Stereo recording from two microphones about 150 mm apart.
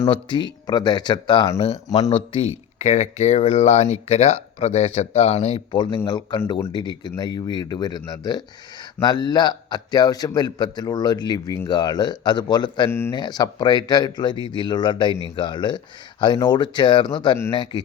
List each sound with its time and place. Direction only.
0.1 s speech: 30° left (ahead or behind); by 5.6 s 45° left (ahead or behind)
5.7 s a man's voice: 30° left (ahead or behind)
12.9 s speech: 15° left (ahead or behind)
13.1 s a man's voice: 30° left (ahead or behind)